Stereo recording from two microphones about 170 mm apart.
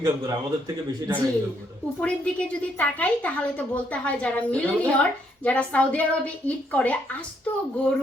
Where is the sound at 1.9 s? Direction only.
5° left (ahead or behind).